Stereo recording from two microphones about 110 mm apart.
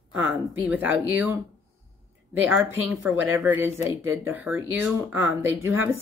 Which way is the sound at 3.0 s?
20° right (ahead or behind).